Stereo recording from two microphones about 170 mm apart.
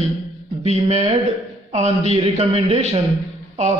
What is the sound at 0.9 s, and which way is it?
Speech, 35° right (ahead or behind).